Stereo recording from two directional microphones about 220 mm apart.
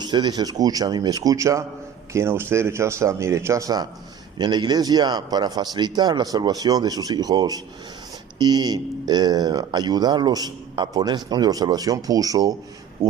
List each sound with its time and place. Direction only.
0.0 s speech: 20° right (ahead or behind)